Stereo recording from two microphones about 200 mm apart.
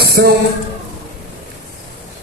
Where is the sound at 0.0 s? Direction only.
50° right (ahead or behind).